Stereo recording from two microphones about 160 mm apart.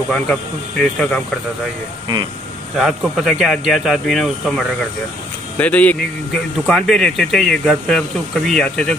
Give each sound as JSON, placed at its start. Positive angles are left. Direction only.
{"t": 0.1, "sound": "speech", "side_deg": 5}
{"t": 2.8, "sound": "speech", "side_deg": 0}